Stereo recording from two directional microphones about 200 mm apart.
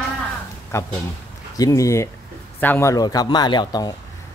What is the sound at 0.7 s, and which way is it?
Speech, 15° left (ahead or behind).